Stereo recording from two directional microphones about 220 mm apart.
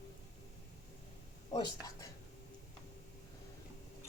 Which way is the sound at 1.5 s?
15° left (ahead or behind).